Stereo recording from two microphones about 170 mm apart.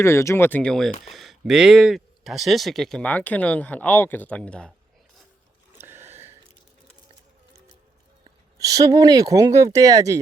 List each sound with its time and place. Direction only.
0.0 s speech: 15° left (ahead or behind)
5.7 s a sound: 15° right (ahead or behind)
8.2 s speech: 20° right (ahead or behind)